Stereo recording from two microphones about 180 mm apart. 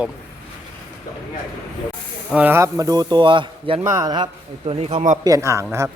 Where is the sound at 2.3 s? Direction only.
10° right (ahead or behind); by 3.8 s 30° right (ahead or behind).